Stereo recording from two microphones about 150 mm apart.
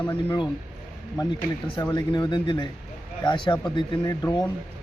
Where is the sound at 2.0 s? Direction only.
30° left (ahead or behind).